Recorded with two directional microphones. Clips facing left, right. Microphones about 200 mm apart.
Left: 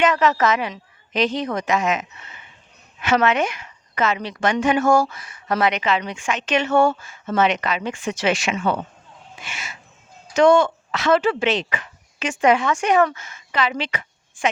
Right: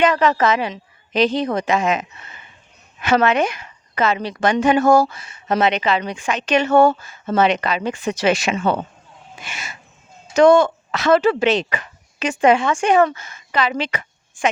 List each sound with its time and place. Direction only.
0.0 s a woman's voice: 35° right (ahead or behind)